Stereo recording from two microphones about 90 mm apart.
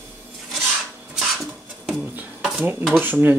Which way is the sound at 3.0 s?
20° right (ahead or behind).